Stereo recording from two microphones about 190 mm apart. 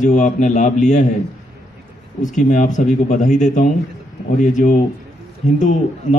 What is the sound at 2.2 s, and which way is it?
A man's voice, 40° left (ahead or behind).